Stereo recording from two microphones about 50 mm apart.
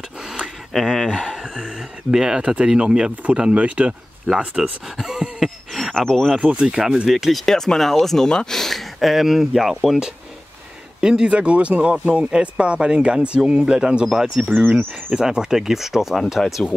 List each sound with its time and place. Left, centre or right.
0.7 s speech: centre; by 3.9 s right
4.3 s speech: centre
4.9 s speech: centre
5.4 s a sound: centre
5.9 s speech: centre
6.3 s speech: centre
6.7 s speech: centre
7.4 s speech: centre
9.1 s speech: centre
11.0 s speech: centre